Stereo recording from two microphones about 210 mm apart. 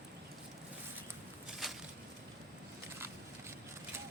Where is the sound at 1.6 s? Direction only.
Centre (ahead or behind).